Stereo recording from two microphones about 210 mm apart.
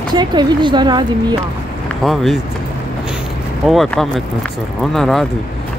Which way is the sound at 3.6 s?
Centre (ahead or behind).